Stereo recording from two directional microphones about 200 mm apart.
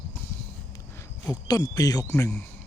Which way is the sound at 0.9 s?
15° left (ahead or behind).